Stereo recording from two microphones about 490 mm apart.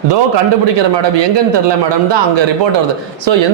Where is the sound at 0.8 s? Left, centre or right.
Right.